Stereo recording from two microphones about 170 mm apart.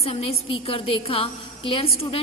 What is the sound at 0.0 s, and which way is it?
A woman's voice, 35° left (ahead or behind).